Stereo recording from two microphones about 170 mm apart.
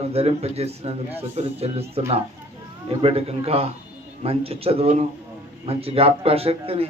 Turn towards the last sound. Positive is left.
turn(degrees=-35)  # may be behind; listen again after turning